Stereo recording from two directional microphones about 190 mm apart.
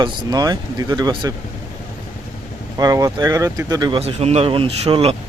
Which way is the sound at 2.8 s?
20° right (ahead or behind).